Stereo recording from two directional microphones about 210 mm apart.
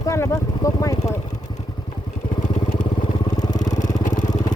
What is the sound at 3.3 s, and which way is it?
Vehicle, 20° left (ahead or behind).